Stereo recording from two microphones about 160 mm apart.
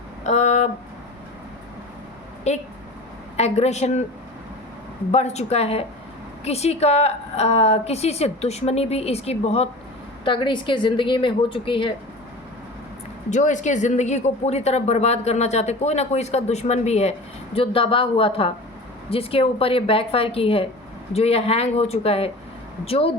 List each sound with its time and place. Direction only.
0.3 s a sound: 45° left (ahead or behind)
2.5 s speech: 45° left (ahead or behind)
5.1 s a woman's voice: 45° left (ahead or behind)
13.3 s a woman's voice: 50° left (ahead or behind)